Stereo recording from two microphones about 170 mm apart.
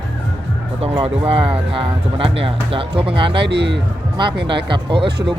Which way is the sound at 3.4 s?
85° right.